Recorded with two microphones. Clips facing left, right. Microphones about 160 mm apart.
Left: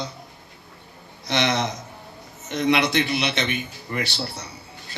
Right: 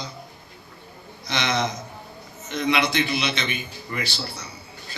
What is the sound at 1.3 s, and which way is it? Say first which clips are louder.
A man's voice: left 2 dB; 65° left (ahead or behind).